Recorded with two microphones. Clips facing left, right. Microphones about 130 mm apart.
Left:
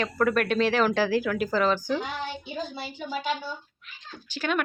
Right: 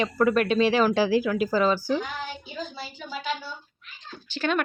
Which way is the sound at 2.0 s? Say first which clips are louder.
Left 1 dB; 25° left (ahead or behind).